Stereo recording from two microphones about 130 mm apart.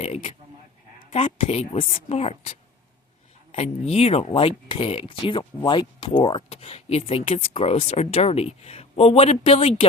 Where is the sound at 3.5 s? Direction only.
50° left (ahead or behind).